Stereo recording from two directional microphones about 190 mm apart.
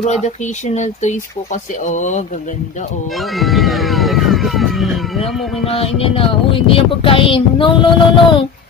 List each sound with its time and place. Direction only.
0.0 s speech: 35° left (ahead or behind)
3.3 s speech: centre (ahead or behind)
5.2 s speech: 30° left (ahead or behind)